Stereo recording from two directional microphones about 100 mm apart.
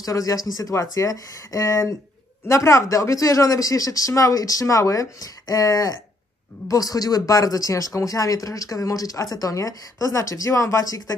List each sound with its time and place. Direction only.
0.0 s speech: 35° left (ahead or behind)